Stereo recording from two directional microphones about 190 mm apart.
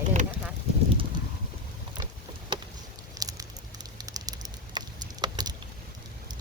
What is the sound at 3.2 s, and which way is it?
Patter, 20° right (ahead or behind).